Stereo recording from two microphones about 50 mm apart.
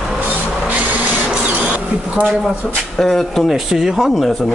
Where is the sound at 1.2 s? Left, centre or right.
Right.